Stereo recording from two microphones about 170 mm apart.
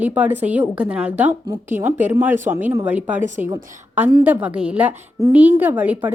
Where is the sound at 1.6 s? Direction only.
45° right (ahead or behind).